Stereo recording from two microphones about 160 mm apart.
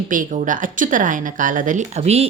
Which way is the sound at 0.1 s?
55° right (ahead or behind).